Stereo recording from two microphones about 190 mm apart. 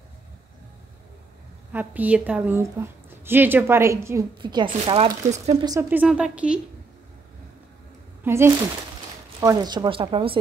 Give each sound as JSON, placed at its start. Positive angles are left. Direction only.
{"t": 1.7, "sound": "a woman's voice", "side_deg": -10}
{"t": 5.9, "sound": "a woman's voice", "side_deg": -5}
{"t": 8.2, "sound": "speech", "side_deg": -15}